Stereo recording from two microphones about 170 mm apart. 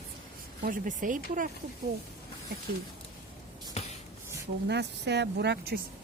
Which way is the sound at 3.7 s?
40° left (ahead or behind).